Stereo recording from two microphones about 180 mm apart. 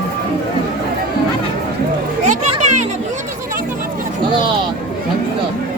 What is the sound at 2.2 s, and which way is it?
Music, 40° right (ahead or behind).